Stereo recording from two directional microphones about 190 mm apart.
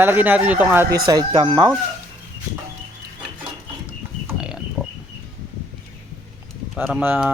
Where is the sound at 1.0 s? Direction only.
25° right (ahead or behind).